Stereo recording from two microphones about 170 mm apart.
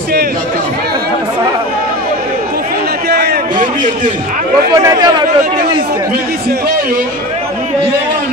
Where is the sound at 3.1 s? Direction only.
70° right (ahead or behind).